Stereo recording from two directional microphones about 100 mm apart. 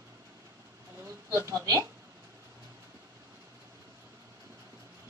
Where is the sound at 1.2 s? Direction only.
25° right (ahead or behind).